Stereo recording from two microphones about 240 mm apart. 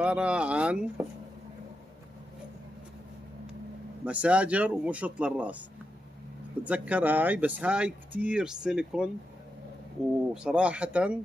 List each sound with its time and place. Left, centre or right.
0.0 s speech: centre
4.0 s speech: centre
6.6 s speech: centre
10.3 s speech: centre